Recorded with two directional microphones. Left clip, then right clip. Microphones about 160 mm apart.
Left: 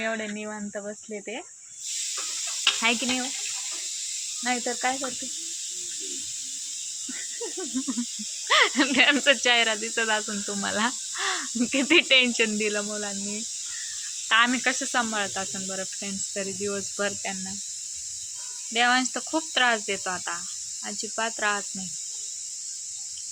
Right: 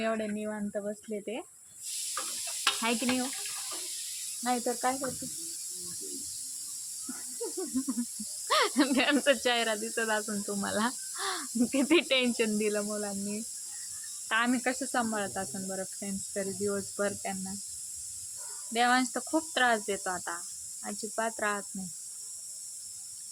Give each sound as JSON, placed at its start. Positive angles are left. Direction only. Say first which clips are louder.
{"t": 0.0, "sound": "speech", "louder": "left 2 dB", "side_deg": 5}
{"t": 2.8, "sound": "speech", "louder": "left 6 dB", "side_deg": 10}
{"t": 4.4, "sound": "speech", "louder": "left 3 dB", "side_deg": 20}
{"t": 8.4, "sound": "speech", "louder": "left 6 dB", "side_deg": 15}
{"t": 18.7, "sound": "speech", "louder": "left 4 dB", "side_deg": 10}